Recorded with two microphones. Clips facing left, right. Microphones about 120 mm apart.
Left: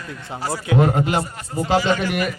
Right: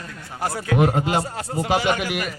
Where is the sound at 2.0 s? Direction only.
Centre (ahead or behind).